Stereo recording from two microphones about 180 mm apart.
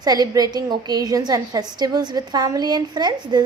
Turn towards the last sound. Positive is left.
turn(degrees=-25)  # may be behind; listen again after turning